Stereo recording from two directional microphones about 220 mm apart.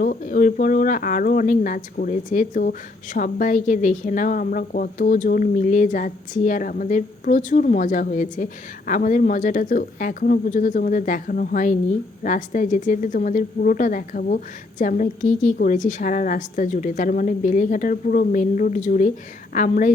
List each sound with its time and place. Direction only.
0.0 s speech: 40° left (ahead or behind)